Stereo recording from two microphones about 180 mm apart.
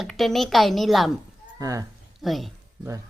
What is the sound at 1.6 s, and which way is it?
Speech, 20° right (ahead or behind).